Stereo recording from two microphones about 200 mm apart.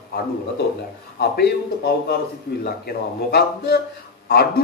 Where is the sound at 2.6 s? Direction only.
50° left (ahead or behind).